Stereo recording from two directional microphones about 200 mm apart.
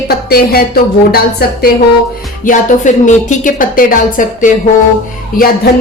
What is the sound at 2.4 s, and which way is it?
A woman's voice, 40° left (ahead or behind).